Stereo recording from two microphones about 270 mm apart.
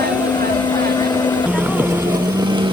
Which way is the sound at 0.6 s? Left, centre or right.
Centre.